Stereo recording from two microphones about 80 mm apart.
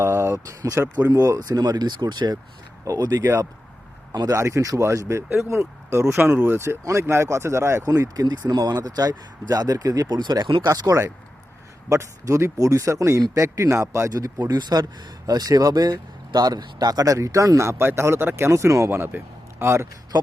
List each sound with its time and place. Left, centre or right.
0.0 s speech: right
1.4 s speech: right
2.8 s speech: right
4.1 s speech: right
4.4 s speech: right
7.9 s speech: right
10.7 s speech: right
14.4 s speech: right